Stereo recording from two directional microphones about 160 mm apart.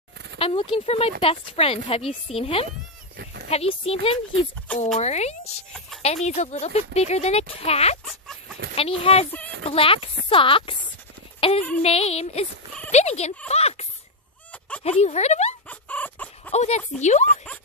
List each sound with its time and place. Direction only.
0.4 s speech: 35° left (ahead or behind)
15.7 s chicken: 10° left (ahead or behind)
16.5 s speech: 45° left (ahead or behind)